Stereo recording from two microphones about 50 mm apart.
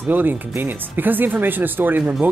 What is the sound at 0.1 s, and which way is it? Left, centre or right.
Speech, right.